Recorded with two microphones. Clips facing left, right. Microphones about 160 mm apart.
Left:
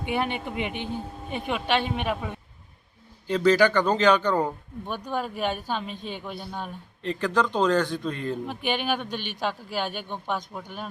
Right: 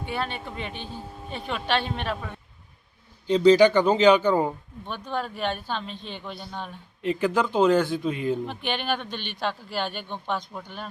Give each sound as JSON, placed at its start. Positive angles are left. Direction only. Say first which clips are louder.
{"t": 0.0, "sound": "speech", "louder": "left 3 dB", "side_deg": 15}
{"t": 3.2, "sound": "a man's voice", "louder": "right 4 dB", "side_deg": -15}
{"t": 4.9, "sound": "speech", "louder": "left 1 dB", "side_deg": 10}
{"t": 7.0, "sound": "a man's voice", "louder": "right 1 dB", "side_deg": -10}
{"t": 8.4, "sound": "speech", "louder": "left 1 dB", "side_deg": 10}